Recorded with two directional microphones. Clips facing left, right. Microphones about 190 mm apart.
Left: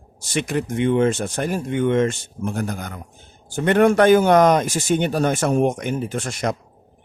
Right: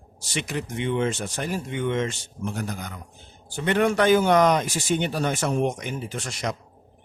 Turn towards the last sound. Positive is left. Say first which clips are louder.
# left 6 dB
turn(degrees=50)  # may be behind; listen again after turning